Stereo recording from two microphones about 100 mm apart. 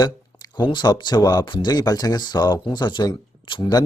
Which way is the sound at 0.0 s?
45° left (ahead or behind).